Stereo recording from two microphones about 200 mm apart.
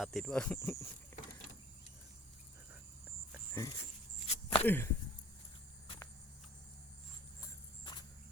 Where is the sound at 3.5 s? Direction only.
15° left (ahead or behind).